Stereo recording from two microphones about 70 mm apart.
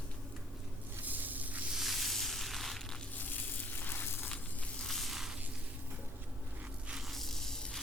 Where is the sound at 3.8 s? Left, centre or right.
Left.